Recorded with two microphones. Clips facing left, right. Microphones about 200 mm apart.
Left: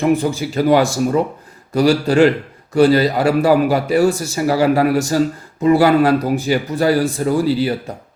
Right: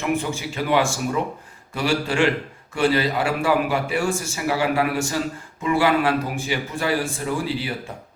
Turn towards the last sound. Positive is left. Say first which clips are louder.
# left 9 dB
turn(degrees=40)  # may be behind; listen again after turning